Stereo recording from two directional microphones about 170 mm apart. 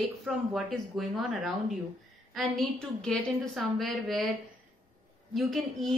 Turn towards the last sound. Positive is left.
turn(degrees=0)  # may be behind; listen again after turning